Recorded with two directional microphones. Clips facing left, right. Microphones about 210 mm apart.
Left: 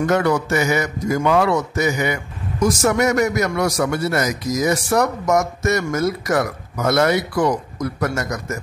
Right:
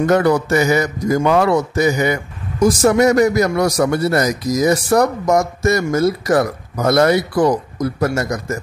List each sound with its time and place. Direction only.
0.0 s a man's voice: 35° right (ahead or behind)